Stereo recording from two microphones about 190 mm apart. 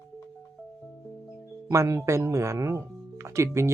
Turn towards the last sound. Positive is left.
turn(degrees=-15)  # may be behind; listen again after turning